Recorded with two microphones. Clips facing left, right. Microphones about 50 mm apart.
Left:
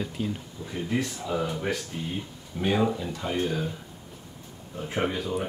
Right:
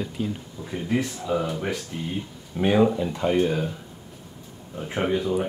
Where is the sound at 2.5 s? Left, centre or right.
Centre.